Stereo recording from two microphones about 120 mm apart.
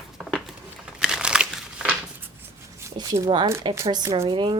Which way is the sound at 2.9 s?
35° right (ahead or behind).